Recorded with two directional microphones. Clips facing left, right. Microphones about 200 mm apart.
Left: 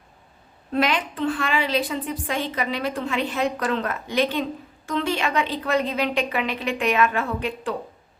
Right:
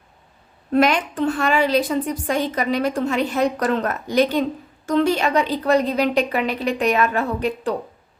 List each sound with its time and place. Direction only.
0.7 s a woman's voice: 45° right (ahead or behind)